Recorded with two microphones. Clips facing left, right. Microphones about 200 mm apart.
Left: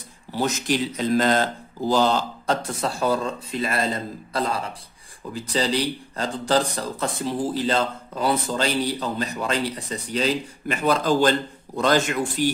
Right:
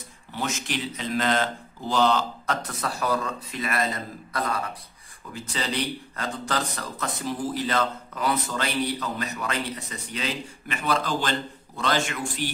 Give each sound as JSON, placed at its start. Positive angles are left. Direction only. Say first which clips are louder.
{"t": 0.3, "sound": "a man's voice", "louder": "left 7 dB", "side_deg": 35}